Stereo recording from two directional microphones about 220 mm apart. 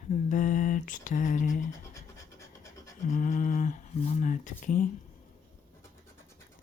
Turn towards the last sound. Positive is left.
turn(degrees=35)  # may be behind; listen again after turning